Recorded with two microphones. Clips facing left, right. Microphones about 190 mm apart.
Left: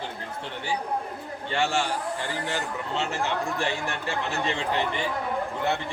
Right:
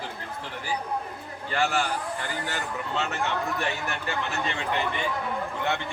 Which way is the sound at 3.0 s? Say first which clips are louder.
Left 1 dB; 30° left (ahead or behind).